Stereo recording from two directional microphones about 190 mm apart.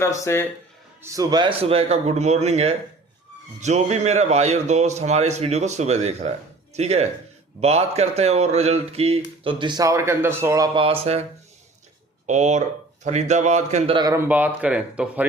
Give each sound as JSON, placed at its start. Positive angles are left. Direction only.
{"t": 0.3, "sound": "speech", "side_deg": 15}
{"t": 1.0, "sound": "a man's voice", "side_deg": -20}
{"t": 10.8, "sound": "a man's voice", "side_deg": -30}